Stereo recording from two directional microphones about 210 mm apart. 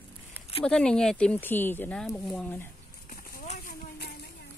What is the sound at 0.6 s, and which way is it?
Speech, 5° left (ahead or behind).